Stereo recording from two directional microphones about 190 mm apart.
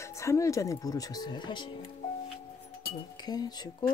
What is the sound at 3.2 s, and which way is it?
Speech, 20° left (ahead or behind).